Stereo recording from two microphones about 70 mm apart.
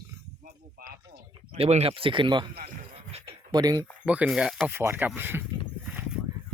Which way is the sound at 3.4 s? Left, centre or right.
Right.